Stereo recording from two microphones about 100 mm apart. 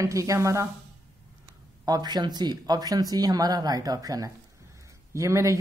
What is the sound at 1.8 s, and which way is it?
A woman's voice, 45° right (ahead or behind).